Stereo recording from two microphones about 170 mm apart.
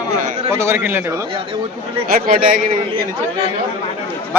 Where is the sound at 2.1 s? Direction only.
55° right (ahead or behind).